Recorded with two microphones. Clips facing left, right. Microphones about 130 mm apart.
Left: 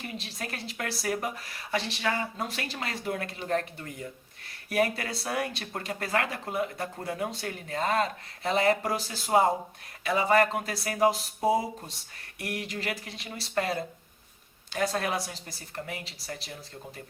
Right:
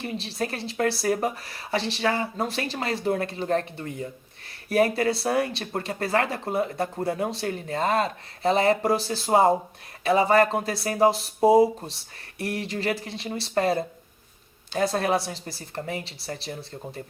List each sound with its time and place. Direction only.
0.0 s speech: 30° right (ahead or behind)